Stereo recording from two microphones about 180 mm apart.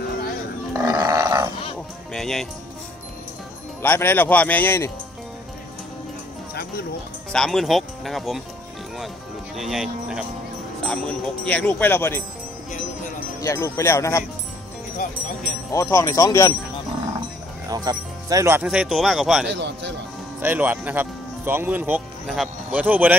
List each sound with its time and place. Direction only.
0.7 s livestock: 20° right (ahead or behind)
2.1 s music: centre (ahead or behind)
3.8 s speech: 10° left (ahead or behind)
6.5 s music: 60° left (ahead or behind)
7.3 s speech: centre (ahead or behind)
9.6 s speech: centre (ahead or behind)
13.4 s speech: 15° left (ahead or behind)
15.7 s speech: 15° left (ahead or behind)
17.6 s speech: 20° right (ahead or behind); by 19.5 s centre (ahead or behind)
19.5 s a man's voice: 80° right
20.3 s speech: 10° right (ahead or behind)